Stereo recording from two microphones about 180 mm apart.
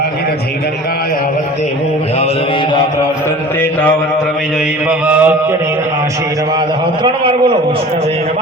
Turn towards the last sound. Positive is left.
turn(degrees=-25)  # may be behind; listen again after turning